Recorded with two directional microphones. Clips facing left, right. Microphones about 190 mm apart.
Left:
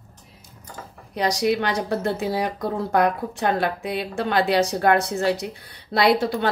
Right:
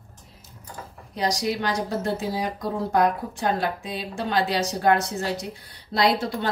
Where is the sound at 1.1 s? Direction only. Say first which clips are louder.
Left 4 dB; 65° left (ahead or behind).